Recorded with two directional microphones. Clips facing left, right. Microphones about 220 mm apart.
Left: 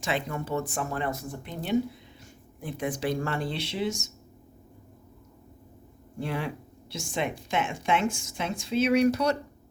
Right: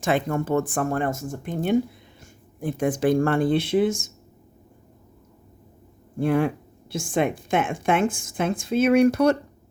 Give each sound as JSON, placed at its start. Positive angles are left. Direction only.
{"t": 0.0, "sound": "a woman's voice", "side_deg": -50}
{"t": 6.1, "sound": "a woman's voice", "side_deg": -50}